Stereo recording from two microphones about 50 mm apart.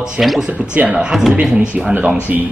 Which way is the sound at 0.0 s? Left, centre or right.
Centre.